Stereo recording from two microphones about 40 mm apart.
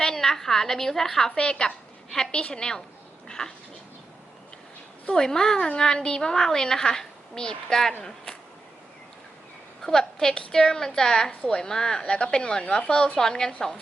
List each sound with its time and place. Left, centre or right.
0.0 s a woman's voice: centre
1.4 s a woman's voice: left
2.0 s a woman's voice: centre
2.3 s a woman's voice: left
3.2 s a sound: centre
5.0 s a woman's voice: centre
9.8 s a woman's voice: centre